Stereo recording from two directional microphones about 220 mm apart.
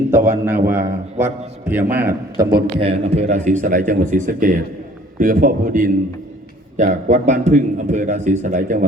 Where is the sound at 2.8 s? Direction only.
30° right (ahead or behind).